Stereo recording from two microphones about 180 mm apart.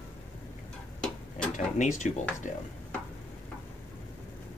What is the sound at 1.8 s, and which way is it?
Speech, 40° left (ahead or behind).